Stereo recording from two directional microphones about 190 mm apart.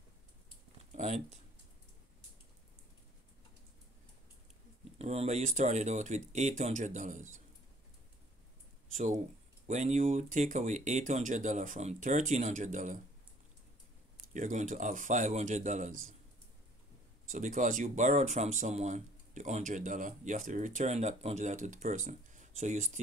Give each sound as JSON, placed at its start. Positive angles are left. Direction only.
{"t": 0.9, "sound": "speech", "side_deg": -40}
{"t": 4.9, "sound": "speech", "side_deg": -35}
{"t": 8.9, "sound": "speech", "side_deg": -40}
{"t": 14.3, "sound": "speech", "side_deg": -40}
{"t": 17.3, "sound": "speech", "side_deg": -45}